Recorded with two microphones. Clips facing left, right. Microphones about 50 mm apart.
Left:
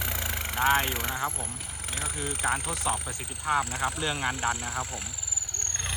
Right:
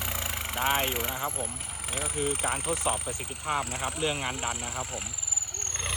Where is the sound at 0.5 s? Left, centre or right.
Centre.